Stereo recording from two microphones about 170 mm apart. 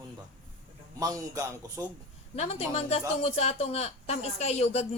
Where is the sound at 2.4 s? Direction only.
40° left (ahead or behind).